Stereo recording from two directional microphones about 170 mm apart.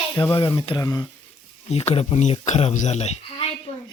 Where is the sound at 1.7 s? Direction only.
35° left (ahead or behind).